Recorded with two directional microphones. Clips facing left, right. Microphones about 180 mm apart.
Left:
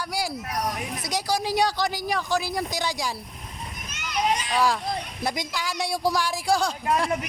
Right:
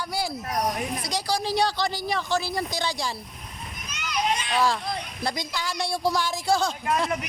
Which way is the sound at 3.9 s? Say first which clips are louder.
Left 1 dB; 40° left (ahead or behind).